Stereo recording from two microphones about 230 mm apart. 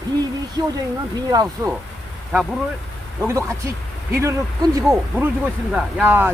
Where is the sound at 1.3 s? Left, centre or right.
Centre.